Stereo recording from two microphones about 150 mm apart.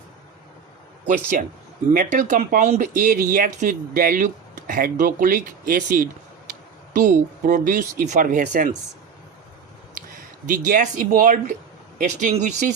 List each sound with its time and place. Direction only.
1.0 s speech: 60° right (ahead or behind)
10.4 s speech: 65° right (ahead or behind)